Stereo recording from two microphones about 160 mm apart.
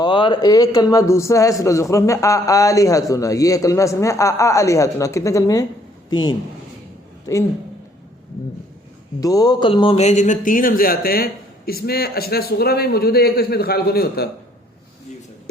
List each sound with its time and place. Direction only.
0.0 s a man's voice: 30° left (ahead or behind)
9.2 s a man's voice: 25° left (ahead or behind)
10.1 s a man's voice: 50° left (ahead or behind); by 14.3 s 75° left (ahead or behind)